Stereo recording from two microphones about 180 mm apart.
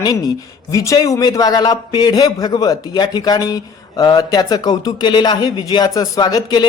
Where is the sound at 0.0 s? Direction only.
20° left (ahead or behind).